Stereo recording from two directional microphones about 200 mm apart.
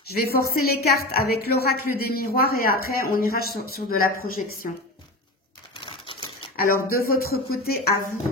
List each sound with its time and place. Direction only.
0.1 s speech: 50° left (ahead or behind)
5.8 s typewriter: 25° left (ahead or behind)
6.5 s speech: 45° left (ahead or behind)